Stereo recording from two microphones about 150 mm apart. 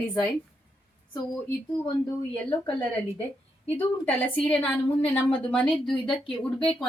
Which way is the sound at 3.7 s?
10° left (ahead or behind).